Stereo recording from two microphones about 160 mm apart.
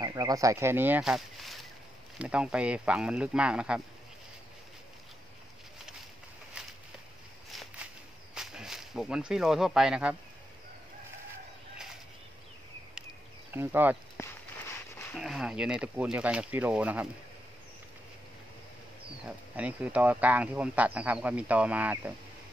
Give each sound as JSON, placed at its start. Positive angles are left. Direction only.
{"t": 0.0, "sound": "speech", "side_deg": -25}
{"t": 8.4, "sound": "speech", "side_deg": -5}
{"t": 13.5, "sound": "speech", "side_deg": -15}
{"t": 14.2, "sound": "a sound", "side_deg": 15}
{"t": 15.1, "sound": "speech", "side_deg": 0}
{"t": 19.2, "sound": "speech", "side_deg": -10}